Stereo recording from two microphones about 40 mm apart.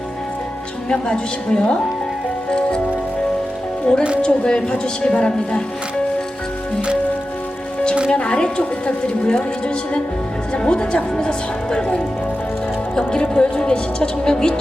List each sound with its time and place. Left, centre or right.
0.9 s speech: left
2.5 s music: left
3.9 s speech: left
8.1 s speech: left